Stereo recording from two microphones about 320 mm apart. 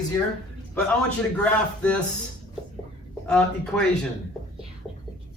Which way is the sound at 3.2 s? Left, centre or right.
Centre.